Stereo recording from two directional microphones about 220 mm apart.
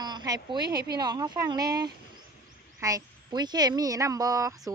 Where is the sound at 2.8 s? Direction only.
15° right (ahead or behind).